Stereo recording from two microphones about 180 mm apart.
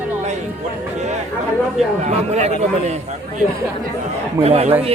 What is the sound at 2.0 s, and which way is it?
Speech, 40° right (ahead or behind).